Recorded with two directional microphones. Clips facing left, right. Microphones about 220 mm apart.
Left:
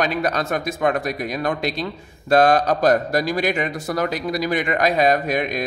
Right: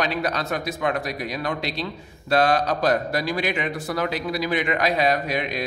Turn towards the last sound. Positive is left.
turn(degrees=45)  # may be behind; listen again after turning